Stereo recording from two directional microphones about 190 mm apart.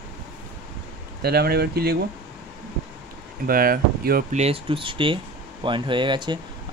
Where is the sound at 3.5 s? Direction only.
50° right (ahead or behind).